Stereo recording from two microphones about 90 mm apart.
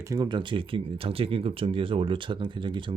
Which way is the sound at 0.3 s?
65° right (ahead or behind).